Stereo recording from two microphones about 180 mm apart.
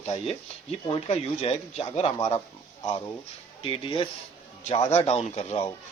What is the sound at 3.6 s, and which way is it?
Speech, 30° left (ahead or behind).